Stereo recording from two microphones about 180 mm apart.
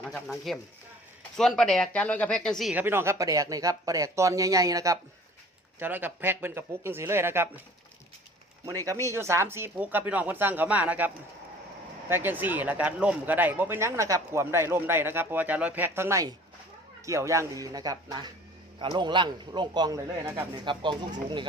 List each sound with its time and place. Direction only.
0.0 s speech: centre (ahead or behind)
8.6 s a man's voice: 20° right (ahead or behind)
20.7 s a man's voice: 25° right (ahead or behind)